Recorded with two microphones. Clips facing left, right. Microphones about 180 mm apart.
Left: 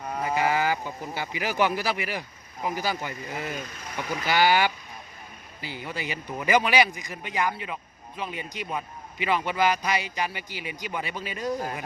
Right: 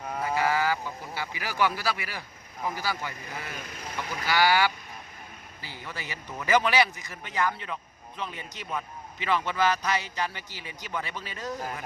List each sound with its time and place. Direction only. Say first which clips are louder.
0.2 s speech: left 2 dB; 20° left (ahead or behind)